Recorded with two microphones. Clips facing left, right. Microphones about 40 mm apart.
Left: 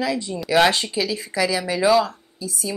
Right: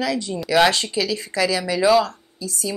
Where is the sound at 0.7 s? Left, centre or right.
Centre.